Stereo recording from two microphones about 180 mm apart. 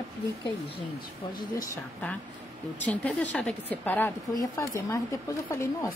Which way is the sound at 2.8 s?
10° left (ahead or behind).